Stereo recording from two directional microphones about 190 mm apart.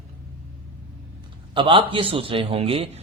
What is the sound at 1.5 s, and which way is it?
A man's voice, 25° right (ahead or behind).